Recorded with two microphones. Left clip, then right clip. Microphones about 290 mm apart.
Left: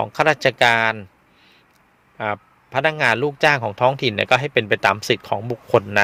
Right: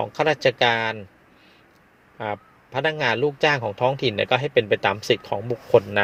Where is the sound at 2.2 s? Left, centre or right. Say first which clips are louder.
Left 4 dB; left.